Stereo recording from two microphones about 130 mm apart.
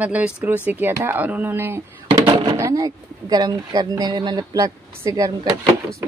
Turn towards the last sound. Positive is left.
turn(degrees=-25)  # may be behind; listen again after turning